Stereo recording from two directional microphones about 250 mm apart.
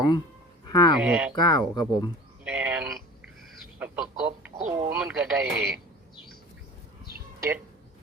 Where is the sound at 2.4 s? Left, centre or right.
Centre.